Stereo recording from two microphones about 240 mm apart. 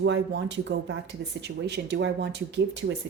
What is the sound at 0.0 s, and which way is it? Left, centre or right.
Speech, right.